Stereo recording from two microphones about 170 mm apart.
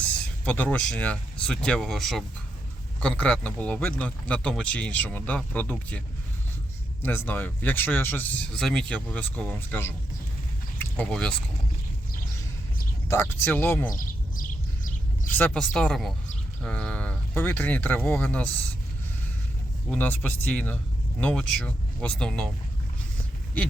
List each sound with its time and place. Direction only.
0.4 s speech: 10° left (ahead or behind)
7.0 s speech: 10° left (ahead or behind)
10.8 s a sound: 5° left (ahead or behind)
13.1 s speech: 15° left (ahead or behind)
13.9 s bird: 55° left (ahead or behind)
15.3 s speech: 10° left (ahead or behind)
19.9 s speech: 10° left (ahead or behind)